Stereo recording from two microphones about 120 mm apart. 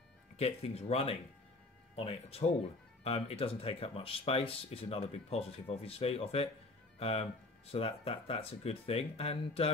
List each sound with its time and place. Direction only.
0.4 s speech: 60° left (ahead or behind)